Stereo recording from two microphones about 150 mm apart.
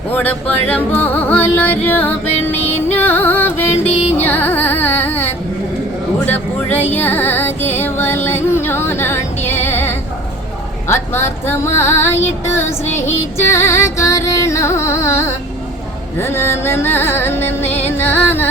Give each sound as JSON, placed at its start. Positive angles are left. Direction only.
{"t": 0.1, "sound": "female singing", "side_deg": 10}
{"t": 0.7, "sound": "music", "side_deg": 15}
{"t": 3.8, "sound": "music", "side_deg": 45}
{"t": 4.2, "sound": "carnatic music", "side_deg": 15}
{"t": 6.2, "sound": "music", "side_deg": 15}
{"t": 10.8, "sound": "female singing", "side_deg": 15}